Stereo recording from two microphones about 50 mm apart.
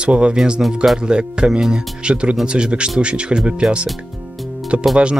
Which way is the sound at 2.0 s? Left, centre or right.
Right.